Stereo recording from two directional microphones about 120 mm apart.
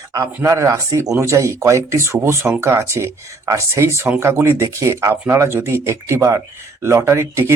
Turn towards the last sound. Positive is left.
turn(degrees=-20)  # may be behind; listen again after turning